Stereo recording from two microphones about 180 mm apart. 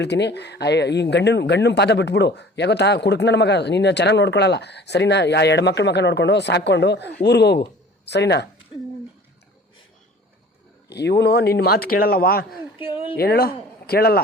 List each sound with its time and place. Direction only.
0.0 s speech: 70° left (ahead or behind)
10.8 s speech: 70° left (ahead or behind)
12.8 s a woman's voice: 30° left (ahead or behind)
13.1 s speech: 60° left (ahead or behind)